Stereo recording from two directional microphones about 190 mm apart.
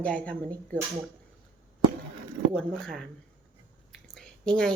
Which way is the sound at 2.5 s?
5° left (ahead or behind).